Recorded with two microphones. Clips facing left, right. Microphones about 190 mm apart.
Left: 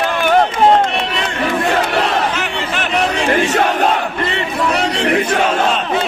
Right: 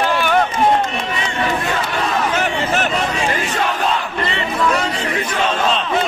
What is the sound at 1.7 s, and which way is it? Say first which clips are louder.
Battle cry: left 4 dB; 65° left (ahead or behind).